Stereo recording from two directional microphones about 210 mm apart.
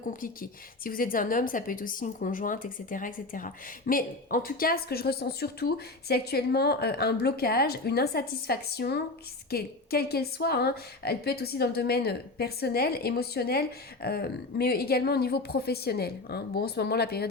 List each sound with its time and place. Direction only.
0.0 s a woman's voice: 40° left (ahead or behind)